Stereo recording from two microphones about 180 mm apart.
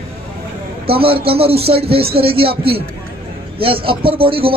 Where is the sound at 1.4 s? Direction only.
30° right (ahead or behind).